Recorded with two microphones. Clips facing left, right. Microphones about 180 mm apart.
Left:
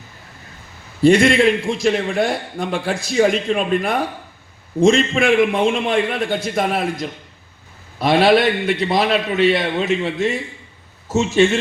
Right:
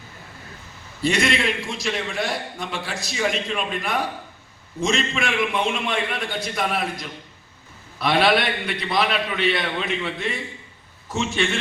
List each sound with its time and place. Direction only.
1.0 s a man's voice: 50° left (ahead or behind)